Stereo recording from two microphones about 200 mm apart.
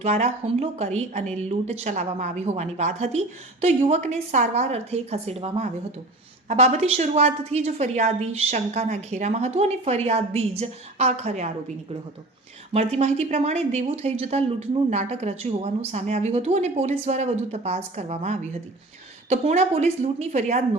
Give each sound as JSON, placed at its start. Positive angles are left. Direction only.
{"t": 0.0, "sound": "a woman's voice", "side_deg": -35}
{"t": 12.7, "sound": "a woman's voice", "side_deg": -30}